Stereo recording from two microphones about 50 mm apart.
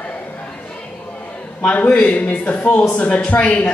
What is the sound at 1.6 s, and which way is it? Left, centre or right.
A woman's voice, left.